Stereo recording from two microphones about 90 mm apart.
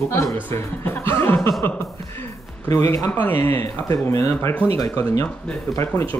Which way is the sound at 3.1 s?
25° left (ahead or behind).